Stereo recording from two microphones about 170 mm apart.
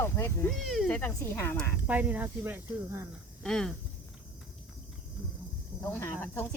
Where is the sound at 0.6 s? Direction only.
Centre (ahead or behind).